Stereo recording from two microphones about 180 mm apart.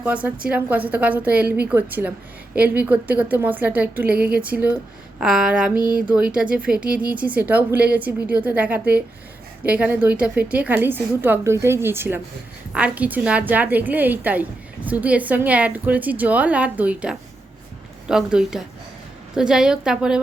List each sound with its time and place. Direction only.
0.0 s a woman's voice: 5° right (ahead or behind)
5.7 s a sound: 25° left (ahead or behind)
6.1 s a woman's voice: 5° right (ahead or behind)